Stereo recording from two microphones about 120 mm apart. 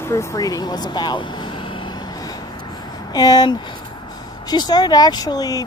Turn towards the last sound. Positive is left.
turn(degrees=30)  # may be behind; listen again after turning